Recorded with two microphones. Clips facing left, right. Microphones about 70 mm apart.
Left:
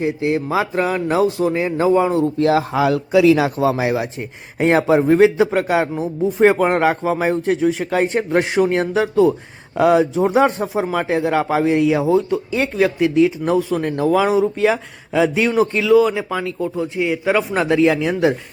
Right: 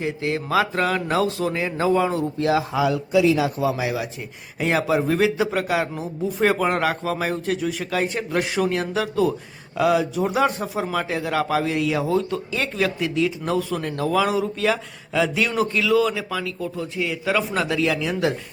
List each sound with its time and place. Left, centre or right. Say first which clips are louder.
0.0 s a man's voice: left 6 dB; left
2.2 s a man's voice: left 5 dB; left
4.6 s a man's voice: left 6 dB; left
9.7 s a man's voice: left 5 dB; left